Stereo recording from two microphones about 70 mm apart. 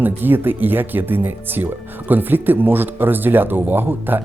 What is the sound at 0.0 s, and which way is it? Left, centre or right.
Speech, right.